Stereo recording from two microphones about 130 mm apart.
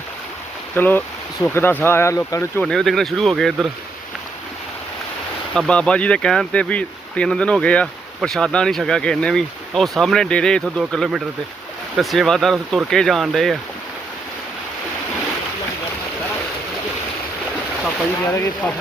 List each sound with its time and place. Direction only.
0.8 s speech: 15° left (ahead or behind)
1.4 s speech: 35° left (ahead or behind)
1.8 s speech: 20° left (ahead or behind)
2.6 s speech: 5° left (ahead or behind)
5.5 s speech: 5° left (ahead or behind)
18.3 s speech: 20° left (ahead or behind)